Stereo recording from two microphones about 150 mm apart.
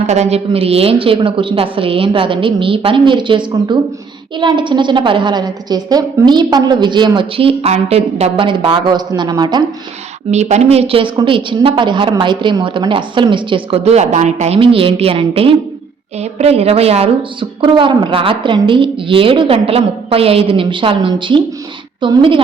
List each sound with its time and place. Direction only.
0.1 s a woman's voice: 45° right (ahead or behind); by 9.6 s 30° right (ahead or behind)
10.3 s a woman's voice: 45° right (ahead or behind)